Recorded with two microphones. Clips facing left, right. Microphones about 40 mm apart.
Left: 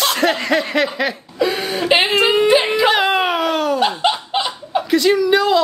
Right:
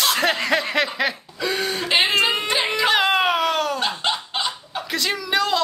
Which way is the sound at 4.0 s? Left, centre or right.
Centre.